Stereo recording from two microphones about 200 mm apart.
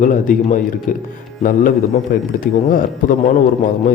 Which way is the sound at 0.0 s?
40° left (ahead or behind).